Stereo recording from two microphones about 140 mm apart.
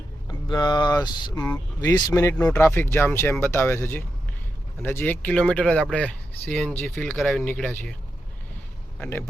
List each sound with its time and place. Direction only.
0.3 s speech: 30° left (ahead or behind); by 7.9 s 10° left (ahead or behind)
9.0 s a man's voice: 15° left (ahead or behind)